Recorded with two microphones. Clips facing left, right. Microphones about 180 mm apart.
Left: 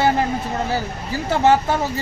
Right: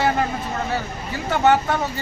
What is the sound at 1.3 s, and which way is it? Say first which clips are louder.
Speech: left 1 dB; 30° left (ahead or behind).